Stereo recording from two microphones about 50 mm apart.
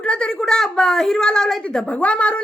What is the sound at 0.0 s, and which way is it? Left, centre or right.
A woman's voice, left.